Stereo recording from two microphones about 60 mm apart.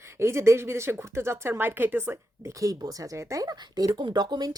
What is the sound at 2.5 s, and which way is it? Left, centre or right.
Speech, right.